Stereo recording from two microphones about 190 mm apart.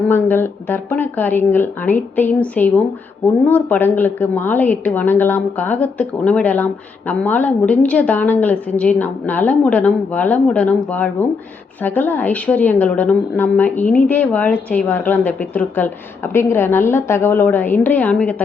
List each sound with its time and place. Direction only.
0.1 s a woman's voice: 10° left (ahead or behind)